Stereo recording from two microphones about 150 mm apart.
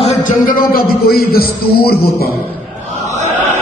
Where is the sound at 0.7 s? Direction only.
85° left.